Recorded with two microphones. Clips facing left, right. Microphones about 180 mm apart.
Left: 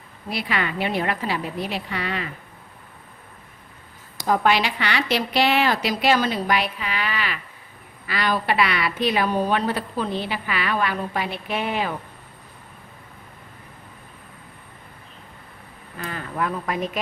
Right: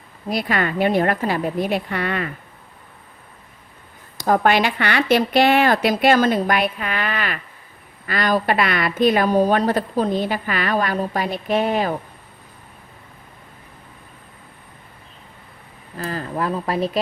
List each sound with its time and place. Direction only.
0.3 s a woman's voice: 45° right (ahead or behind)
4.3 s a woman's voice: 50° right (ahead or behind)
16.0 s speech: 35° right (ahead or behind)